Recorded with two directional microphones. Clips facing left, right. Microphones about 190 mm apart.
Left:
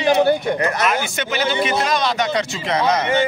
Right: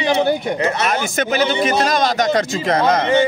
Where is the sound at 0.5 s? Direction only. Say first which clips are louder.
Right 1 dB; 25° right (ahead or behind).